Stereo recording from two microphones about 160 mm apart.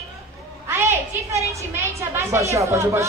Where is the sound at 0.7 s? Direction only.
15° right (ahead or behind).